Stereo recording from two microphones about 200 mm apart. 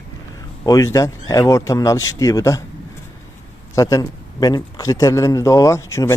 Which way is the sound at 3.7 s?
15° left (ahead or behind).